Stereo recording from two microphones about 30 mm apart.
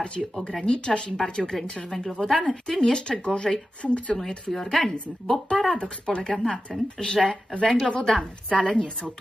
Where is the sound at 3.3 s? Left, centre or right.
Left.